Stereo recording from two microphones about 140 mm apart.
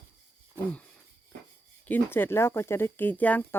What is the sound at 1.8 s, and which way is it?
Speech, 15° left (ahead or behind).